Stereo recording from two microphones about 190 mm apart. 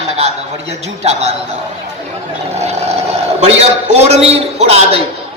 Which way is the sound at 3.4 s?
35° right (ahead or behind).